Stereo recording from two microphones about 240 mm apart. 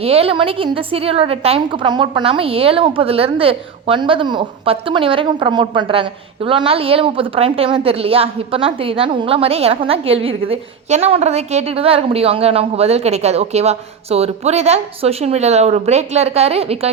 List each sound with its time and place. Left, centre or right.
0.0 s a woman's voice: right